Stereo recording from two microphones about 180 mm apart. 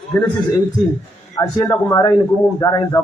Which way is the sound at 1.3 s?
15° left (ahead or behind).